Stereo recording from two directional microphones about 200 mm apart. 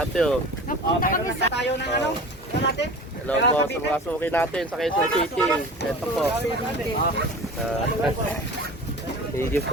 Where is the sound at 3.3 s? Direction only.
10° left (ahead or behind).